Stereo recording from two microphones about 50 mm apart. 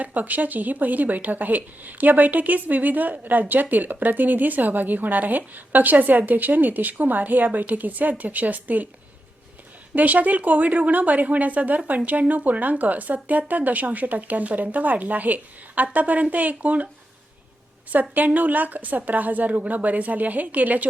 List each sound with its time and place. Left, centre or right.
0.0 s speech: right
9.9 s speech: right
17.9 s speech: right